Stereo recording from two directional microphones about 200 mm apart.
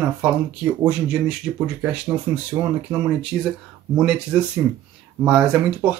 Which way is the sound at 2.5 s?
15° right (ahead or behind).